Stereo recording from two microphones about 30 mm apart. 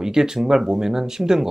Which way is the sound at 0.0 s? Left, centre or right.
Centre.